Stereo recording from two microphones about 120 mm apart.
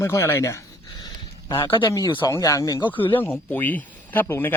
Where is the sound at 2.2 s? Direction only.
25° left (ahead or behind).